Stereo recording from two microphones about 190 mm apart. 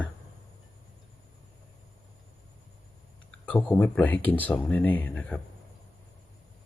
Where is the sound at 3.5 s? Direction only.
5° left (ahead or behind).